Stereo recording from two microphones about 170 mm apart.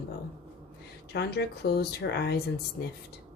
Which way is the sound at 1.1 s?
70° left (ahead or behind).